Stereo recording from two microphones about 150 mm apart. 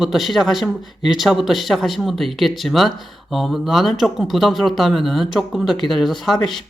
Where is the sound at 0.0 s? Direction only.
Centre (ahead or behind).